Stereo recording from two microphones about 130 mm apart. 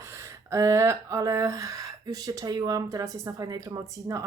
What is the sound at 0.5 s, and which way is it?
Speech, 25° right (ahead or behind).